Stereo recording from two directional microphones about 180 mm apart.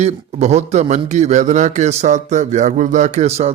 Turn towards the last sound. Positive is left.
turn(degrees=-35)  # may be behind; listen again after turning